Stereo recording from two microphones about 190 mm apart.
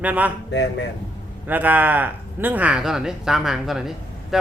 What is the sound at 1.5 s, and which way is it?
Speech, 10° right (ahead or behind).